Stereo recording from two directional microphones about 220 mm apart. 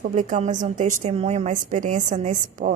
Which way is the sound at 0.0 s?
35° right (ahead or behind).